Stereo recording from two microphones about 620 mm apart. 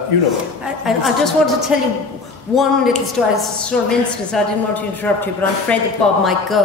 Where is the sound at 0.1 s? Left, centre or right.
Left.